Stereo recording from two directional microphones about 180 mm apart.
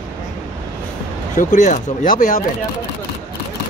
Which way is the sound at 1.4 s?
40° left (ahead or behind).